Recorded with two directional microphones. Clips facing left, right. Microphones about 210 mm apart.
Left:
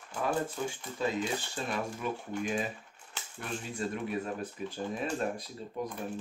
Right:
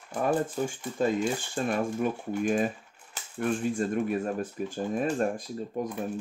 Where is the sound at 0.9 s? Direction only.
50° right (ahead or behind).